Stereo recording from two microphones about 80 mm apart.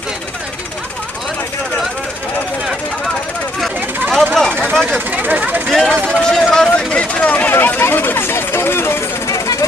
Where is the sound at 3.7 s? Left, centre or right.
Right.